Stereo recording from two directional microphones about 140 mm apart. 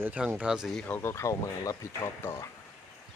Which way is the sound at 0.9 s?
20° left (ahead or behind).